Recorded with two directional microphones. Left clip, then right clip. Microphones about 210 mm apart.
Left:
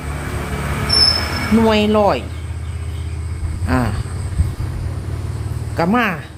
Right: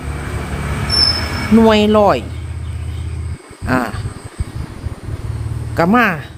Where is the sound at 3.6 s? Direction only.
35° right (ahead or behind).